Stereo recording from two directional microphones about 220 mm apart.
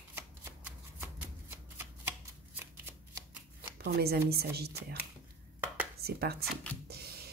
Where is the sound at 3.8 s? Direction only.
45° right (ahead or behind).